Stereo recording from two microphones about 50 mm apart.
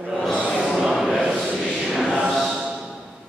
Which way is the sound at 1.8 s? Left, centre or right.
Centre.